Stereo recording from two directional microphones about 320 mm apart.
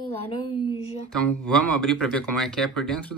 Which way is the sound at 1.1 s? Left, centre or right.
Centre.